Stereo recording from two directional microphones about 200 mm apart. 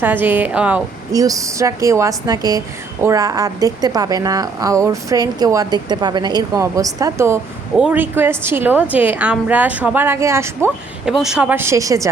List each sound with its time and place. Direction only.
0.0 s a woman's voice: 10° right (ahead or behind)
1.1 s a woman's voice: 15° right (ahead or behind)
11.0 s a woman's voice: centre (ahead or behind)